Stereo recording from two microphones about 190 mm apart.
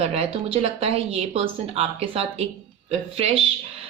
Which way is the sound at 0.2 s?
30° right (ahead or behind).